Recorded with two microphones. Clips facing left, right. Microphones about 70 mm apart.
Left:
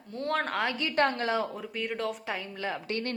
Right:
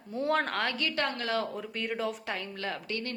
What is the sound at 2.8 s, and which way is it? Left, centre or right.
Speech, left.